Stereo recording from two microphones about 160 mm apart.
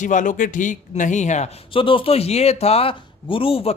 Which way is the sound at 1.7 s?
35° left (ahead or behind).